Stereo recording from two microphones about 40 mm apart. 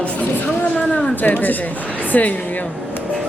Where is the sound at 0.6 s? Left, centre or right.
Left.